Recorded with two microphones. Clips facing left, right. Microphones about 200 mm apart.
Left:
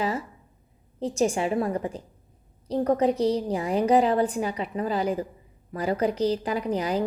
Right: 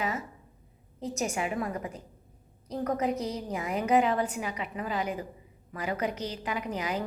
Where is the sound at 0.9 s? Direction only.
30° left (ahead or behind).